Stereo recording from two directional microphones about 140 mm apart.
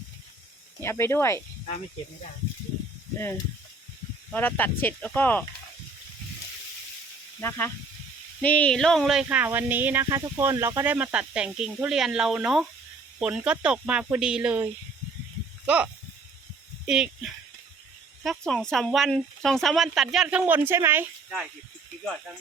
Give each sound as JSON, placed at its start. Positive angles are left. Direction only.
{"t": 0.8, "sound": "speech", "side_deg": 20}
{"t": 4.3, "sound": "speech", "side_deg": 10}
{"t": 7.3, "sound": "speech", "side_deg": 15}